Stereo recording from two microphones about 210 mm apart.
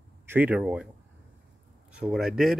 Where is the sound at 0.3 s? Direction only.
10° right (ahead or behind).